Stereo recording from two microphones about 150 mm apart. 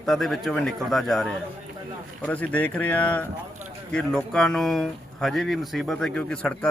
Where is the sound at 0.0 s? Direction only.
Centre (ahead or behind).